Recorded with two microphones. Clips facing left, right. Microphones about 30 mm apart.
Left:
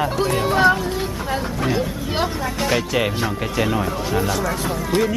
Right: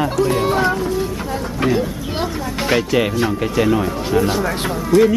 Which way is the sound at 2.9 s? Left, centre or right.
Centre.